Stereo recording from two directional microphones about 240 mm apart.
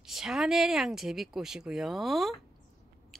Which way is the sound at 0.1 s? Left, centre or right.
Centre.